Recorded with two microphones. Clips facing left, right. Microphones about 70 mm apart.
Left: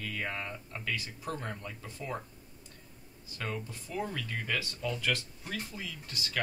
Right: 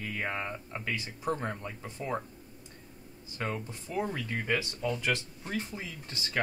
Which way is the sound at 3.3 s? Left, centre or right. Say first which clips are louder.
Right 3 dB; right.